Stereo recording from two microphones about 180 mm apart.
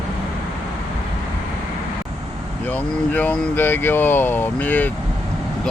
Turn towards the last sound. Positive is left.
turn(degrees=10)  # may be behind; listen again after turning